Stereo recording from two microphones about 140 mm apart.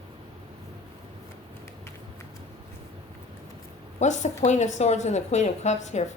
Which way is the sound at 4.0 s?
55° left (ahead or behind).